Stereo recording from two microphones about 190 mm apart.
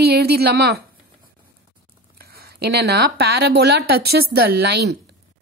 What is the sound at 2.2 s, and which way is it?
Speech, 55° right (ahead or behind).